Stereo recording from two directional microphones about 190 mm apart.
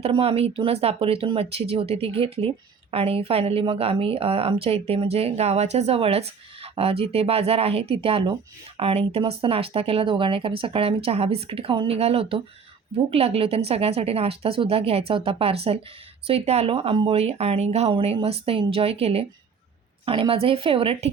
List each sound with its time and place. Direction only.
0.0 s a woman's voice: 30° right (ahead or behind)